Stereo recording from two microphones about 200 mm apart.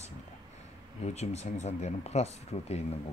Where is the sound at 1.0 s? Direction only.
35° left (ahead or behind).